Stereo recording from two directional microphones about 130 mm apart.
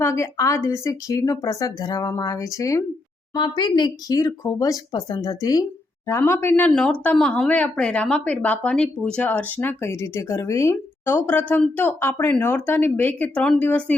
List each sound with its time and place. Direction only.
0.0 s a woman's voice: 20° left (ahead or behind)
6.1 s speech: 20° left (ahead or behind)
6.7 s speech: 5° left (ahead or behind)